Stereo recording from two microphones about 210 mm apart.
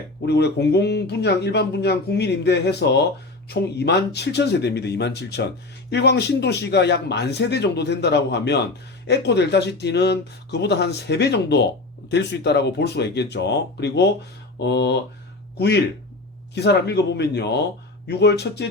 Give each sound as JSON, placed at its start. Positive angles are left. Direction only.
{"t": 0.3, "sound": "speech", "side_deg": 50}